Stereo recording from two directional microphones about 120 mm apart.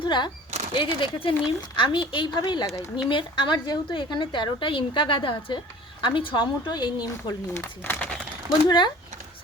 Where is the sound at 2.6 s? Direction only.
25° left (ahead or behind).